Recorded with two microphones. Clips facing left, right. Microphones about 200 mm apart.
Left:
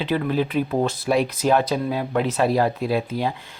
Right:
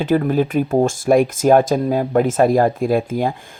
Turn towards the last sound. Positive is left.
turn(degrees=-50)  # may be behind; listen again after turning